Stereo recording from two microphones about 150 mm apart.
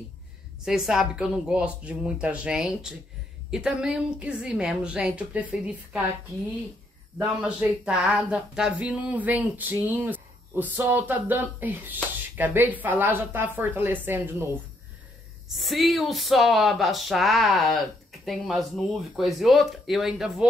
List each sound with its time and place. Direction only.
0.7 s speech: 5° right (ahead or behind)
7.4 s speech: 5° right (ahead or behind)
15.4 s speech: centre (ahead or behind)